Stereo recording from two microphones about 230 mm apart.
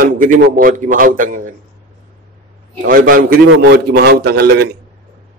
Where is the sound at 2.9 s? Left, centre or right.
Right.